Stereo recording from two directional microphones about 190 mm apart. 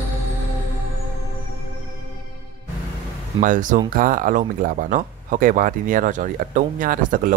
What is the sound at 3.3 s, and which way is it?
Speech, 45° right (ahead or behind).